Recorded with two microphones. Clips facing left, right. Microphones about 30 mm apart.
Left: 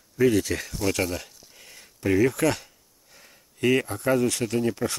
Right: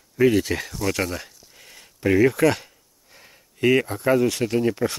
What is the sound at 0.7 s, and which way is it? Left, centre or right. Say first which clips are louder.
Speech: left 1 dB; centre.